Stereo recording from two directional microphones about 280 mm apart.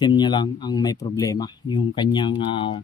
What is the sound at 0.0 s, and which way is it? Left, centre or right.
Speech, centre.